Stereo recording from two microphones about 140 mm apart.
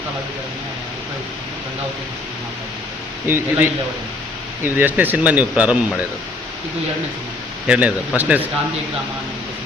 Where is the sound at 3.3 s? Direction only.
15° right (ahead or behind).